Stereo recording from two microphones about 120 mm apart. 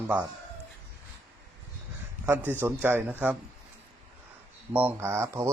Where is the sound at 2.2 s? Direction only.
15° right (ahead or behind).